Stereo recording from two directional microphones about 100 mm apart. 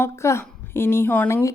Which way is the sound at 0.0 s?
25° left (ahead or behind).